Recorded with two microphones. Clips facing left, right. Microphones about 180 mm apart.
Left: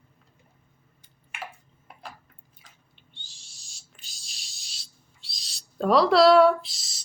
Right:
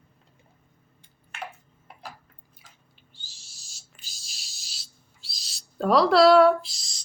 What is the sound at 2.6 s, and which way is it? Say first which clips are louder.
Chewing: right 1 dB; 5° right (ahead or behind).